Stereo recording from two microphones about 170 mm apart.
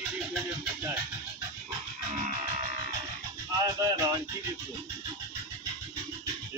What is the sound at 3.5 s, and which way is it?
Music, 20° right (ahead or behind).